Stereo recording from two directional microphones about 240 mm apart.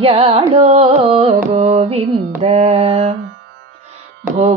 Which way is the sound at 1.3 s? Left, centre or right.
Right.